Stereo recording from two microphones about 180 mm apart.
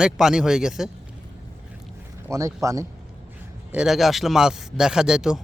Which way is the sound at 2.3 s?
15° right (ahead or behind).